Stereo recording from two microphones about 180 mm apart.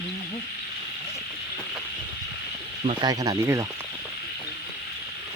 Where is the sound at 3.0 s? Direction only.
20° right (ahead or behind).